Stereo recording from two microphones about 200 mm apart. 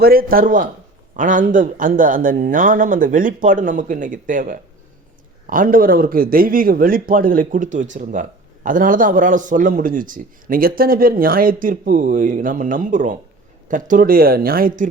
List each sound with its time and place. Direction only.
0.0 s a man's voice: 45° right (ahead or behind)